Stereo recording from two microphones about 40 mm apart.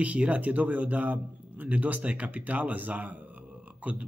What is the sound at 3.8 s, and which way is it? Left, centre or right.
Speech, right.